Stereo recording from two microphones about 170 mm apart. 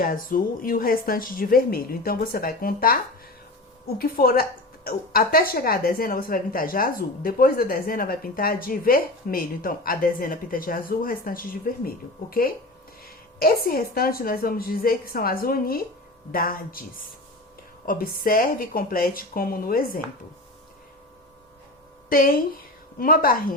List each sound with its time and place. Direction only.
0.0 s speech: 55° left (ahead or behind)
17.8 s speech: 55° left (ahead or behind)
22.1 s speech: 55° left (ahead or behind)